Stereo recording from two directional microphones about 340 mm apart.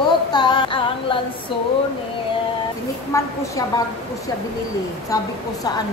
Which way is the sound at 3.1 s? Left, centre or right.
Centre.